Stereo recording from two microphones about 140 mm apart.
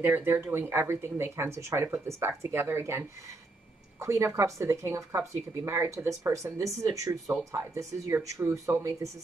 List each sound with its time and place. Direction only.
0.0 s speech: 15° right (ahead or behind)